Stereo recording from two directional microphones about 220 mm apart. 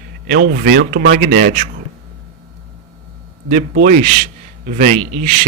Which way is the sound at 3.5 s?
35° right (ahead or behind).